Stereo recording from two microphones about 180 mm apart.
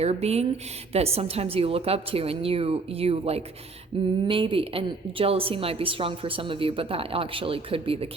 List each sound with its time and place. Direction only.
0.0 s a woman's voice: 35° right (ahead or behind)
3.9 s a sound: 30° right (ahead or behind)
4.3 s a woman's voice: 30° right (ahead or behind)